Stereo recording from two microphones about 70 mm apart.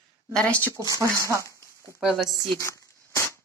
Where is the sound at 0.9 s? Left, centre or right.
Right.